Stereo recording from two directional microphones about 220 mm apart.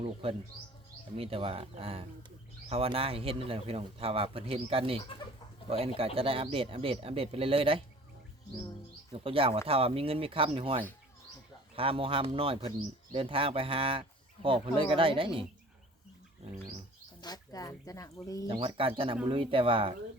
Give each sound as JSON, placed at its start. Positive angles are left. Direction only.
{"t": 0.0, "sound": "speech", "side_deg": -25}
{"t": 9.1, "sound": "speech", "side_deg": -25}
{"t": 17.2, "sound": "speech", "side_deg": 20}
{"t": 18.4, "sound": "speech", "side_deg": -25}